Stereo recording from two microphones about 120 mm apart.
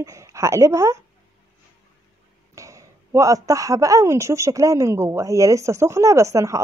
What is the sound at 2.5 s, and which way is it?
Speech, 25° right (ahead or behind).